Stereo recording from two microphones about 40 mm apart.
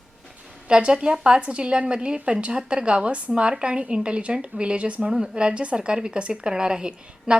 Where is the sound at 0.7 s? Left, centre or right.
Right.